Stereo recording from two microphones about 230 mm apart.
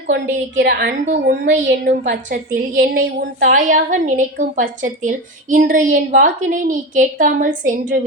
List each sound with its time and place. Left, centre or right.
0.6 s a woman's voice: right